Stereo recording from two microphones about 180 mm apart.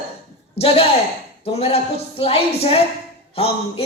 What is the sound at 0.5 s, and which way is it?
Speech, 35° left (ahead or behind).